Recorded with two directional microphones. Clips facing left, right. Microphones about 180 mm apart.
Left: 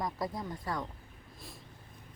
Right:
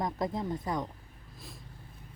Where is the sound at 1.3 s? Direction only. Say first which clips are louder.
Right 1 dB; centre (ahead or behind).